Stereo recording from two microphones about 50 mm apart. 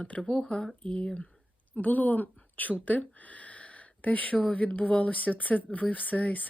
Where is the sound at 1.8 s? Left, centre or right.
Left.